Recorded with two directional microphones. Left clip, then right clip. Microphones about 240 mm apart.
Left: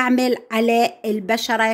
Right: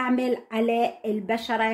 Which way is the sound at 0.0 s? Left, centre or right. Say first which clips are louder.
Left 6 dB; left.